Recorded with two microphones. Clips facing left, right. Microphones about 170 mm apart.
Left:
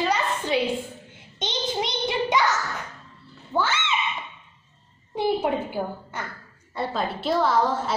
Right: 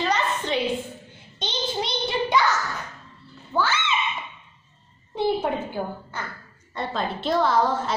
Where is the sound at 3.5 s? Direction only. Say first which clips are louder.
Even; 20° left (ahead or behind).